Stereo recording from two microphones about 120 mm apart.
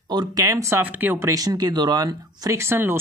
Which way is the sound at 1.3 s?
30° right (ahead or behind).